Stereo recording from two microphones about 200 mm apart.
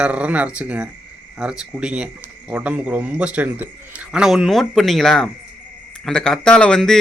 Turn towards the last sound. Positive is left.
turn(degrees=5)  # may be behind; listen again after turning